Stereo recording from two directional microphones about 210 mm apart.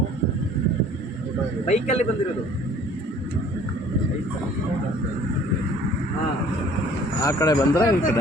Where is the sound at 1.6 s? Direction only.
30° left (ahead or behind).